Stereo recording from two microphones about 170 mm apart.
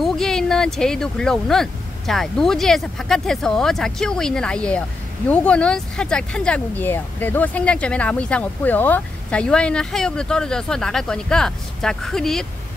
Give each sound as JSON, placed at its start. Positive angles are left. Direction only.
{"t": 0.0, "sound": "speech", "side_deg": 0}